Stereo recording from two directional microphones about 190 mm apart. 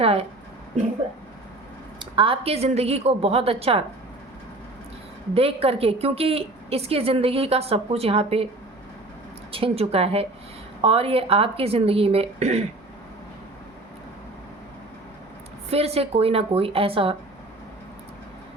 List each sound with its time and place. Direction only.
0.0 s a woman's voice: 30° right (ahead or behind)
2.0 s a woman's voice: 25° right (ahead or behind)
5.3 s a woman's voice: 30° right (ahead or behind)
9.5 s a woman's voice: 30° right (ahead or behind)
15.7 s a woman's voice: 30° right (ahead or behind)